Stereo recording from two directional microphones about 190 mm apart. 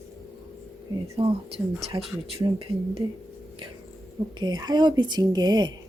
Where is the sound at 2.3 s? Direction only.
30° right (ahead or behind).